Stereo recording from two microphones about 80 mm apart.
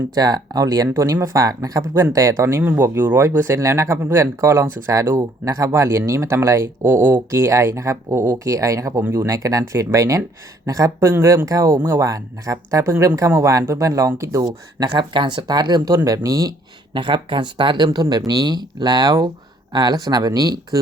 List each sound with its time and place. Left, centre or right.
0.1 s speech: right
14.4 s speech: right
16.9 s speech: right